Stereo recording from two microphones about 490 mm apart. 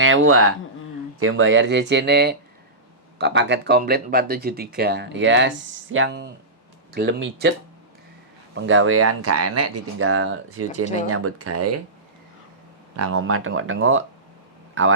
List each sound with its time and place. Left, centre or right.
0.0 s speech: right
8.5 s speech: right
13.0 s speech: right